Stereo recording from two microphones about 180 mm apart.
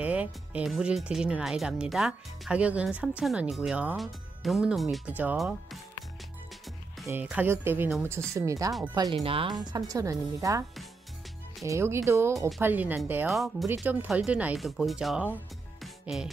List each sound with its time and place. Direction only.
0.0 s speech: 10° right (ahead or behind)
7.1 s speech: 10° right (ahead or behind); by 9.5 s 30° right (ahead or behind)
9.7 s speech: 20° right (ahead or behind)
11.6 s speech: 15° right (ahead or behind)
15.8 s music: centre (ahead or behind)